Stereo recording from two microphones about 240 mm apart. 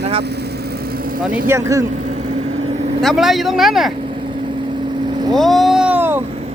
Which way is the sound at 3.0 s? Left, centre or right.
Centre.